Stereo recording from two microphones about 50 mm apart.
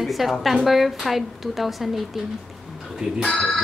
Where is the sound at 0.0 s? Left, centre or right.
Centre.